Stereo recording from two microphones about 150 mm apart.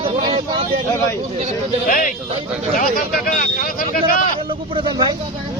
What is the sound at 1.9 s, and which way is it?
Speech, 65° left (ahead or behind).